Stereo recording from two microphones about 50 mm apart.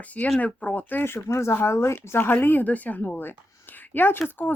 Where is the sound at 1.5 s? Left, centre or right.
Left.